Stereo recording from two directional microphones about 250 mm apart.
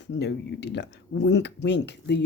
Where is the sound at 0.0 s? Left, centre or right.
Left.